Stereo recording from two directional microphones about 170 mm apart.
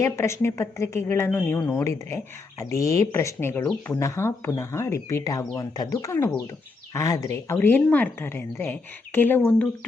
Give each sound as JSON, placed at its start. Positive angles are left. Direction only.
{"t": 0.0, "sound": "speech", "side_deg": 15}